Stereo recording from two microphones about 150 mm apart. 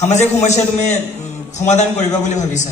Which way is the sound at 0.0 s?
50° left (ahead or behind).